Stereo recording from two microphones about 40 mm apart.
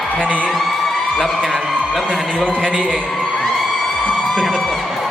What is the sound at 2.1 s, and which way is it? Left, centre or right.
Speech, left.